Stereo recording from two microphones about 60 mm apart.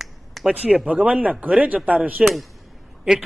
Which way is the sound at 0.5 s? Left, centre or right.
Right.